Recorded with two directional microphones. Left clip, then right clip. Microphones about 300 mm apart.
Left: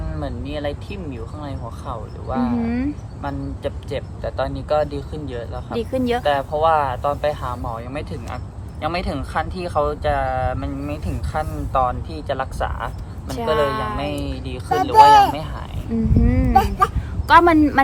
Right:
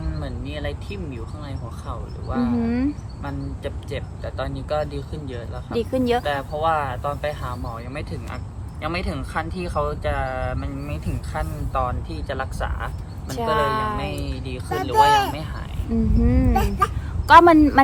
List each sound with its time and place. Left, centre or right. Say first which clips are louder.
0.2 s speech: left 6 dB; centre
2.6 s speech: even; centre
3.2 s speech: left 4 dB; centre
5.7 s speech: even; centre
6.2 s speech: left 5 dB; centre
13.6 s speech: even; centre
13.9 s speech: left 3 dB; centre
15.9 s speech: left 1 dB; centre
16.6 s speech: left 8 dB; centre
17.2 s speech: right 1 dB; centre